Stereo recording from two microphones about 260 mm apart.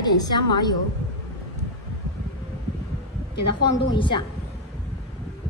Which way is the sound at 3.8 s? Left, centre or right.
Centre.